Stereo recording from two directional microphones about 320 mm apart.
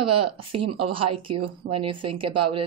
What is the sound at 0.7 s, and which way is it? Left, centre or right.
Speech, right.